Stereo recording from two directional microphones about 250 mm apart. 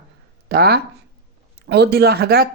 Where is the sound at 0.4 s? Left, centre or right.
Right.